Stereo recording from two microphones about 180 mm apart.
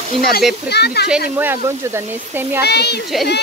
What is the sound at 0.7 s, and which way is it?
Speech, 65° left (ahead or behind).